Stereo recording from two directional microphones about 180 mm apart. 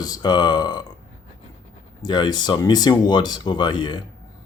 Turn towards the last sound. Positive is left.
turn(degrees=25)  # may be behind; listen again after turning